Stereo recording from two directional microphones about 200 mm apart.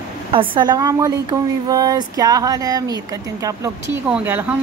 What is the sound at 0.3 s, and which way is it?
Speech, 25° right (ahead or behind).